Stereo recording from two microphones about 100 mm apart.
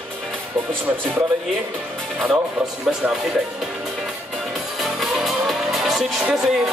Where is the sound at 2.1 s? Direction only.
5° right (ahead or behind).